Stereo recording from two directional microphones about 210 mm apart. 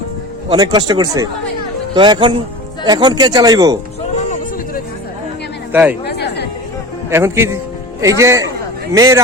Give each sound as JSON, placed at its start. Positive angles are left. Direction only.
{"t": 0.5, "sound": "speech", "side_deg": -20}
{"t": 5.7, "sound": "a man's voice", "side_deg": -10}
{"t": 6.1, "sound": "chatter", "side_deg": 50}
{"t": 7.1, "sound": "a man's voice", "side_deg": -10}